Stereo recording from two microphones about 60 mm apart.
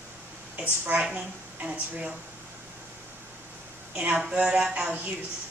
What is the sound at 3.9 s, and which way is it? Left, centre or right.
Speech, centre.